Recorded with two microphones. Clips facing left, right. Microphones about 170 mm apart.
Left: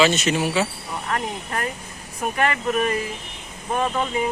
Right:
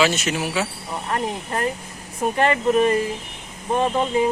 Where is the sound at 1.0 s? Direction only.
25° right (ahead or behind).